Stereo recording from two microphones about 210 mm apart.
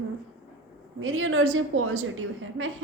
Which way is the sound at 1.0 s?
70° right (ahead or behind).